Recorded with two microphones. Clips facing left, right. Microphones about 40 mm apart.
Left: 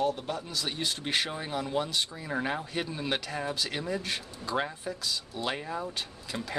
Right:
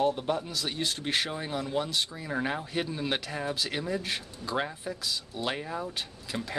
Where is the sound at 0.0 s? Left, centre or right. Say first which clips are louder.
Right 3 dB; centre.